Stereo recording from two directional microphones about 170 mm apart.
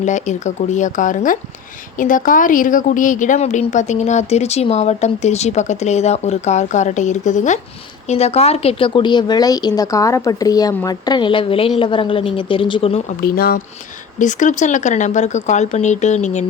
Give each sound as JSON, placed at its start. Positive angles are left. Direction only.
{"t": 0.0, "sound": "a woman's voice", "side_deg": 45}
{"t": 13.2, "sound": "speech", "side_deg": 60}
{"t": 14.2, "sound": "a woman's voice", "side_deg": 45}